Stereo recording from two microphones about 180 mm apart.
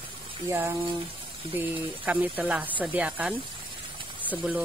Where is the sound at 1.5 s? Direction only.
10° right (ahead or behind).